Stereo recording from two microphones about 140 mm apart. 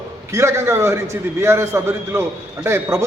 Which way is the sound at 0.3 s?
20° right (ahead or behind).